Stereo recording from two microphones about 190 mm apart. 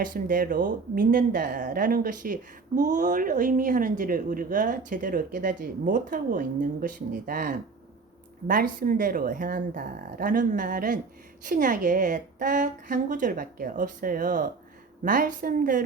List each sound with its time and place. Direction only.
0.0 s speech: 45° right (ahead or behind)